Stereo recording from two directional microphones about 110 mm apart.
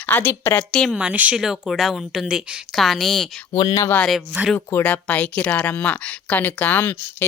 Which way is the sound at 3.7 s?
30° left (ahead or behind).